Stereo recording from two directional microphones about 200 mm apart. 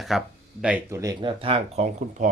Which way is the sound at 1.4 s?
30° right (ahead or behind).